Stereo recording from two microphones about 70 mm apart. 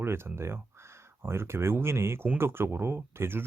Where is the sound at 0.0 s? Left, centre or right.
Right.